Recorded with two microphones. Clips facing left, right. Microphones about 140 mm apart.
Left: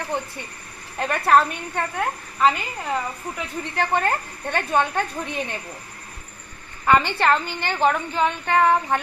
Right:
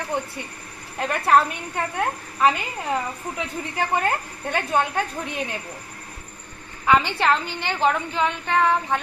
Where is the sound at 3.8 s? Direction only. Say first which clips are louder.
Left 1 dB; 10° right (ahead or behind).